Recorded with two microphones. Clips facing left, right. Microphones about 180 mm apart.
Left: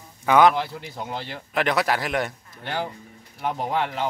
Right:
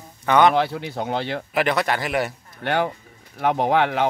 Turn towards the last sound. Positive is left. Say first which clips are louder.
# right 6 dB
turn(degrees=-70)  # may be behind; listen again after turning